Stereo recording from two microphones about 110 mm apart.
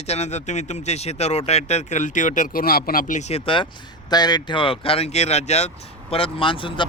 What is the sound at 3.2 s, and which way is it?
Speech, 85° left.